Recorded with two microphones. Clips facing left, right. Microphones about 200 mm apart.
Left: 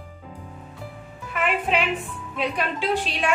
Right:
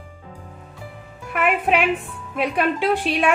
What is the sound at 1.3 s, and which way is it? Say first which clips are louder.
A woman's voice: right 4 dB; 55° right (ahead or behind).